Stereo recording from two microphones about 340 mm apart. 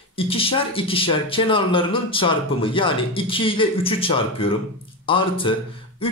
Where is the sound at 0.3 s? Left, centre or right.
Centre.